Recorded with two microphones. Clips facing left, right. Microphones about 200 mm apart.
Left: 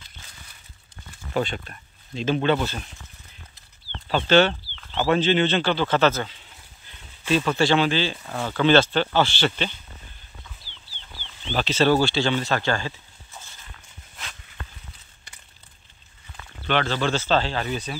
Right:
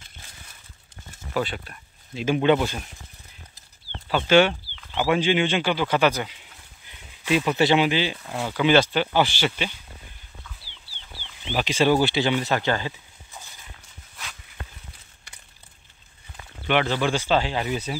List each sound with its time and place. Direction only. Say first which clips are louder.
2.1 s speech: right 2 dB; 10° right (ahead or behind)
4.1 s speech: even; 10° right (ahead or behind)
11.4 s speech: even; 10° right (ahead or behind)
16.6 s speech: right 1 dB; 15° right (ahead or behind)